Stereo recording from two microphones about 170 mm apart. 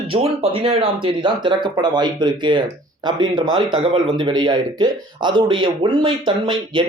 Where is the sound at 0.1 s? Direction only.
35° right (ahead or behind).